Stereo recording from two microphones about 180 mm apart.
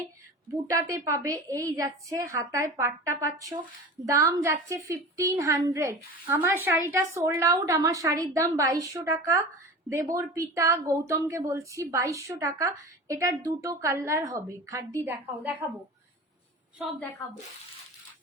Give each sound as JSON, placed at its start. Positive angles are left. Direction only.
{"t": 0.5, "sound": "a woman's voice", "side_deg": -20}